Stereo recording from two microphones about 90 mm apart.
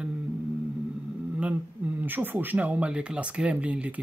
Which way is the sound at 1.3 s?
15° right (ahead or behind).